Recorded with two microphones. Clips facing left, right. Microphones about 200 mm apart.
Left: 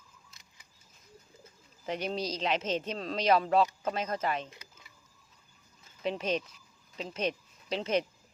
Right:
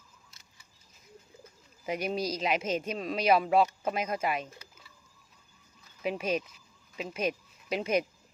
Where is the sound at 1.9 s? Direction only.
10° right (ahead or behind).